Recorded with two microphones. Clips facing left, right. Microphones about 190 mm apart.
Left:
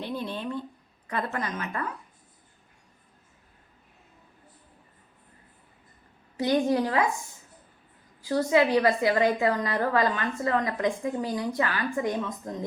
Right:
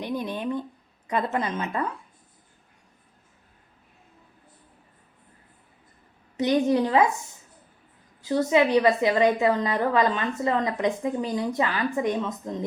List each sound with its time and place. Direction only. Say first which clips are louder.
0.0 s a sound: right 3 dB; 15° right (ahead or behind)
1.0 s a woman's voice: right 5 dB; 20° right (ahead or behind)
6.3 s a woman's voice: right 2 dB; 20° right (ahead or behind)
8.2 s a woman's voice: right 2 dB; 25° right (ahead or behind)